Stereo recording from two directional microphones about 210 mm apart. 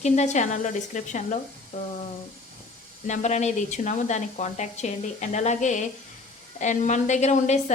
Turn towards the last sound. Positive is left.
turn(degrees=35)  # may be behind; listen again after turning